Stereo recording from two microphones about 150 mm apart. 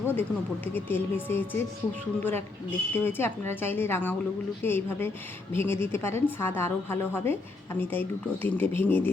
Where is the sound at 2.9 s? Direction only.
15° left (ahead or behind).